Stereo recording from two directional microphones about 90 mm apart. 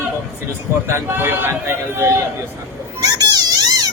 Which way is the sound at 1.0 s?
25° right (ahead or behind).